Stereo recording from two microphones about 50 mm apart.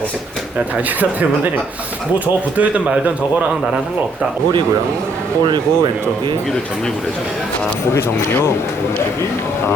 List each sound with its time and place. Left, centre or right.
2.1 s speech: right
7.9 s speech: left